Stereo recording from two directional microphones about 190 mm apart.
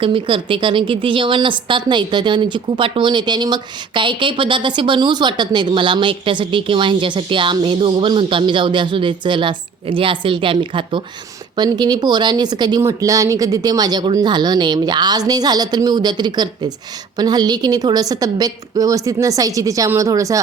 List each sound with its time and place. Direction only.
0.0 s a woman's voice: 25° right (ahead or behind)